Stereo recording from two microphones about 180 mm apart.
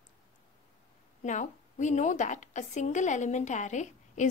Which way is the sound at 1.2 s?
40° left (ahead or behind).